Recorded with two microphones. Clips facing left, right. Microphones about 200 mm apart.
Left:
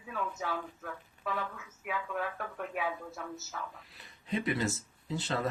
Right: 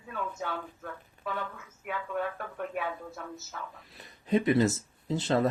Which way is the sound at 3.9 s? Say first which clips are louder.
Right 8 dB; 40° right (ahead or behind).